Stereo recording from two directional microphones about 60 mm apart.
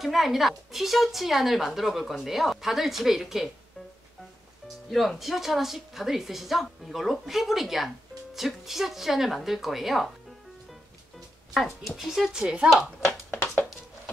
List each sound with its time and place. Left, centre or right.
0.0 s a woman's voice: centre
4.9 s a woman's voice: centre
11.5 s a woman's voice: centre